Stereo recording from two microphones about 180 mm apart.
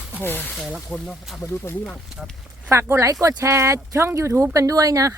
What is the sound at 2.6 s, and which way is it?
Speech, 15° right (ahead or behind).